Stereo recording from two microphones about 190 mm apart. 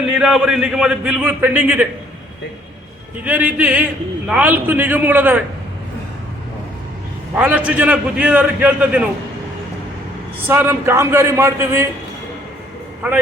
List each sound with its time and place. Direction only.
0.1 s a man's voice: 5° right (ahead or behind)
3.2 s a man's voice: 5° right (ahead or behind)
7.3 s a man's voice: 10° right (ahead or behind)
10.5 s a man's voice: 10° right (ahead or behind)